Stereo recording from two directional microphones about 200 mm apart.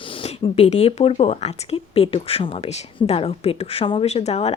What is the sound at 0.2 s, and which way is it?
Speech, 30° left (ahead or behind).